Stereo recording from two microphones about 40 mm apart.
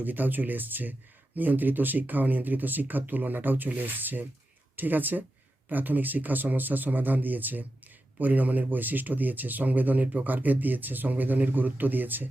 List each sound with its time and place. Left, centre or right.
0.0 s speech: right